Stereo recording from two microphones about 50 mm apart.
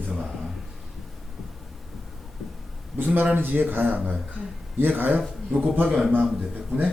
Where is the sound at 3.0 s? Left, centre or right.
Right.